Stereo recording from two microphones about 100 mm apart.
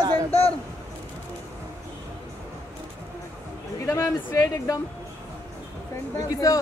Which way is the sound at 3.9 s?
30° left (ahead or behind).